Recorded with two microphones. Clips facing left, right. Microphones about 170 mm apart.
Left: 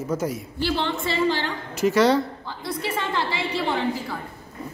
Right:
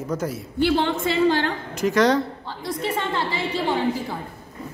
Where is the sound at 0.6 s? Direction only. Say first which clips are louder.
Right 5 dB; 50° right (ahead or behind).